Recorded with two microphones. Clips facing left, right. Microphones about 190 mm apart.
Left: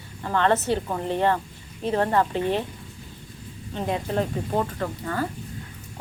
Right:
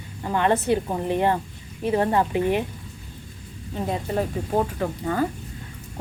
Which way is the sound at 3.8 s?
Centre (ahead or behind).